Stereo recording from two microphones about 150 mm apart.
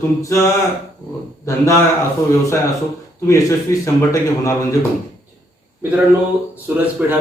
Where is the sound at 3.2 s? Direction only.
20° left (ahead or behind).